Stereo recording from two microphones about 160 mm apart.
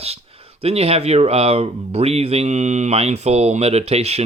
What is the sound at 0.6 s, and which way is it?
Speech, 40° right (ahead or behind).